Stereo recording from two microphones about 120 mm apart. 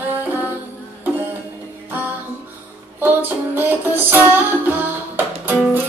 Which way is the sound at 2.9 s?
15° right (ahead or behind).